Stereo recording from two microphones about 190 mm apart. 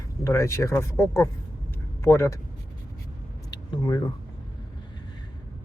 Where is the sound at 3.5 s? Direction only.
20° left (ahead or behind).